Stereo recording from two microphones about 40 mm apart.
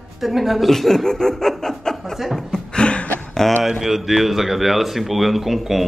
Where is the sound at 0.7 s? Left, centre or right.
Centre.